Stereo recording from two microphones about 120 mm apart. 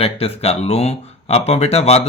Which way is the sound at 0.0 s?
55° left (ahead or behind).